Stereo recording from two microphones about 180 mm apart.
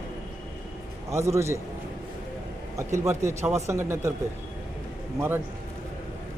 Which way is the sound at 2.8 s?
15° right (ahead or behind).